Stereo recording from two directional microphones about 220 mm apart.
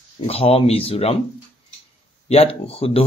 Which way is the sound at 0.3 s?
25° left (ahead or behind).